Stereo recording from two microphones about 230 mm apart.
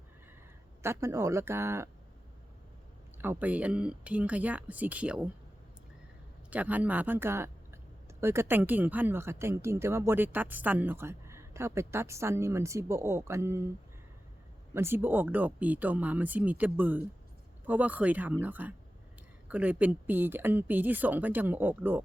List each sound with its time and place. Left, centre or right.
0.8 s speech: centre
3.2 s speech: centre
6.5 s speech: centre
14.7 s speech: centre